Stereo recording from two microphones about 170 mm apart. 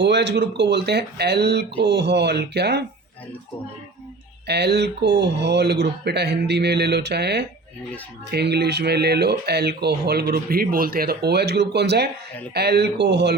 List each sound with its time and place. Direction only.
0.0 s speech: 90° right
4.4 s speech: 75° right (ahead or behind)